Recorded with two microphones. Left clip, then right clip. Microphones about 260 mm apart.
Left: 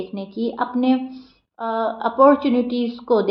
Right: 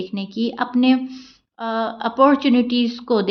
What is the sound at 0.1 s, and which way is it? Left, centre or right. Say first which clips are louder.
A woman's voice: right 1 dB; right.